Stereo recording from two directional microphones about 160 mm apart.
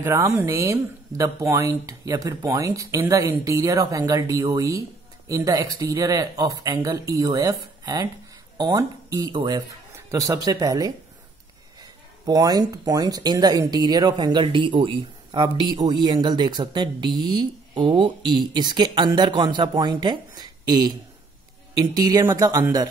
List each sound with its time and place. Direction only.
0.0 s speech: 15° right (ahead or behind)